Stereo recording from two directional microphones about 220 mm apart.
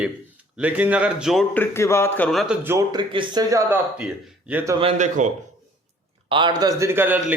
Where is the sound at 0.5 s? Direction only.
5° right (ahead or behind).